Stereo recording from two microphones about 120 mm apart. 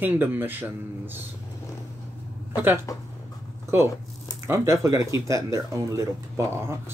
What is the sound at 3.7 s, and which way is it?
Speech, 20° right (ahead or behind).